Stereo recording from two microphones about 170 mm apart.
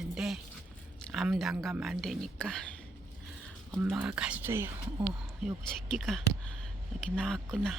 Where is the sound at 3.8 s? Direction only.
10° right (ahead or behind).